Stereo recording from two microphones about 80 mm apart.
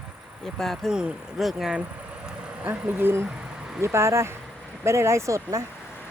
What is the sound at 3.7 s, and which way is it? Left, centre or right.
Speech, right.